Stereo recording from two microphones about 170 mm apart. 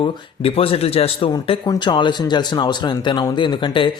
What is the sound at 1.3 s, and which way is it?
Speech, 25° left (ahead or behind).